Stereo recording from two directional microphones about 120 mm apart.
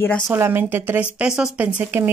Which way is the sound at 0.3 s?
20° right (ahead or behind).